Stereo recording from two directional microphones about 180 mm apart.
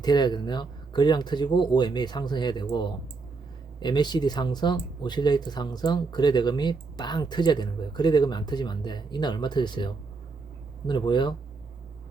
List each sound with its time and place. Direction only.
0.0 s speech: 25° left (ahead or behind)